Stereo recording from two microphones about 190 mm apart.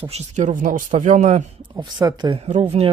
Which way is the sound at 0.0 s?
35° right (ahead or behind).